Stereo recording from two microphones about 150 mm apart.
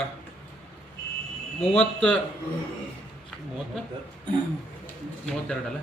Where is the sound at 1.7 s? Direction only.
10° left (ahead or behind).